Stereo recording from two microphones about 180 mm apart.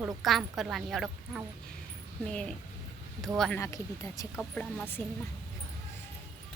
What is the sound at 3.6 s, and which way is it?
Speech, 20° left (ahead or behind).